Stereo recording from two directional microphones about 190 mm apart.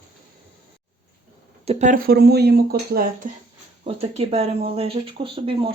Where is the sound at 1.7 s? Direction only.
35° right (ahead or behind).